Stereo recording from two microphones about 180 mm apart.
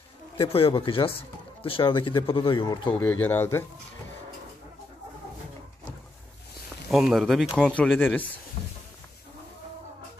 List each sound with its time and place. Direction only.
0.4 s a man's voice: 30° left (ahead or behind)
2.9 s speech: 10° left (ahead or behind)
6.9 s speech: centre (ahead or behind)